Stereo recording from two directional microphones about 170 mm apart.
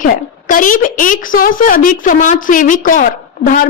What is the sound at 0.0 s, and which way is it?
A woman's voice, 50° left (ahead or behind).